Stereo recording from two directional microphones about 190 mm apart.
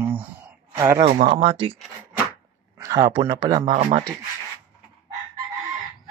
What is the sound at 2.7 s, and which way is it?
Speech, 20° right (ahead or behind).